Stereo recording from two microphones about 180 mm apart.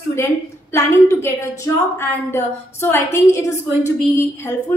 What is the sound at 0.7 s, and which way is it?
A woman's voice, 15° left (ahead or behind).